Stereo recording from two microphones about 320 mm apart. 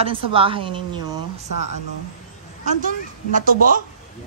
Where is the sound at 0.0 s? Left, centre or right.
Centre.